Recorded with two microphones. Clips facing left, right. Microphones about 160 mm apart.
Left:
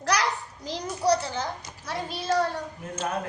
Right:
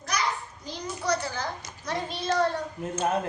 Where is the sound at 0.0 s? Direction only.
85° left.